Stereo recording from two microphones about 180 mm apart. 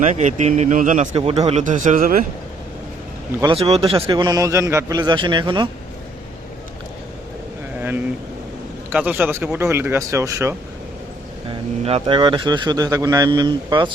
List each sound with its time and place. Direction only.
0.0 s a man's voice: 45° right (ahead or behind)
3.4 s speech: 30° right (ahead or behind)
7.8 s vehicle: 10° right (ahead or behind)
8.9 s speech: 10° right (ahead or behind)
11.4 s speech: 30° right (ahead or behind)